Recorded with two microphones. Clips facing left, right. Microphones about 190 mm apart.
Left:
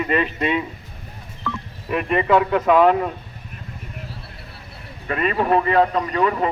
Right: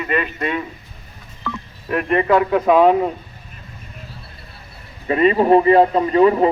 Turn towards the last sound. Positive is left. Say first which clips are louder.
# right 7 dB
turn(degrees=-30)  # may be behind; listen again after turning